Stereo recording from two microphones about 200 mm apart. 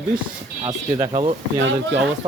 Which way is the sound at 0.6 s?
20° right (ahead or behind).